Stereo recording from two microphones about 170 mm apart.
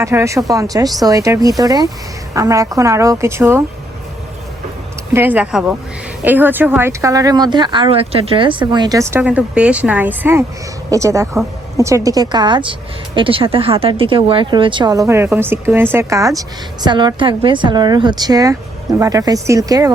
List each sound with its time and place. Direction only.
0.0 s speech: 15° right (ahead or behind)
5.1 s speech: 10° right (ahead or behind)